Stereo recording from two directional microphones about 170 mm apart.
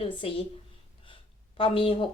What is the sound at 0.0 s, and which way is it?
A woman's voice, 30° left (ahead or behind).